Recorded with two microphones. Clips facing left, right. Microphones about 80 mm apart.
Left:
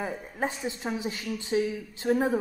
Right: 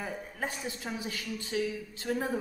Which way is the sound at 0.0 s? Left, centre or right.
Left.